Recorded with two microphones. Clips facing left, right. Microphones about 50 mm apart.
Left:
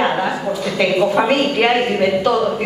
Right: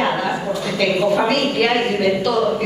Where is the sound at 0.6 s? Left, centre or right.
Left.